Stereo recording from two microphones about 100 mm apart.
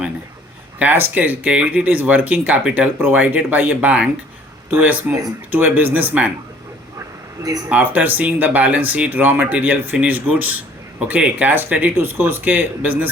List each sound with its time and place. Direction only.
0.8 s speech: 20° right (ahead or behind)
7.7 s speech: 15° right (ahead or behind)